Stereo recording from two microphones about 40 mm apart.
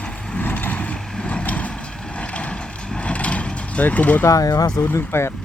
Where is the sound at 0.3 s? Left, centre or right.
Left.